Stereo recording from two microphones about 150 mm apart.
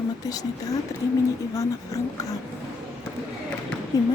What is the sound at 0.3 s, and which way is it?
Speech, 25° left (ahead or behind).